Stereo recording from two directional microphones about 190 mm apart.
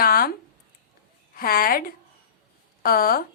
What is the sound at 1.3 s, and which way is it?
Speech, 50° left (ahead or behind).